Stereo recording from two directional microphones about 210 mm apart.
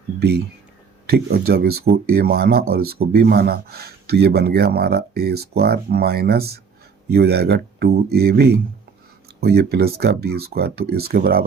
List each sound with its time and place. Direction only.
0.2 s speech: 50° right (ahead or behind)